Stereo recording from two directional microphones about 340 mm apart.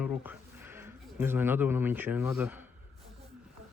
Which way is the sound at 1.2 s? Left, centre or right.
Centre.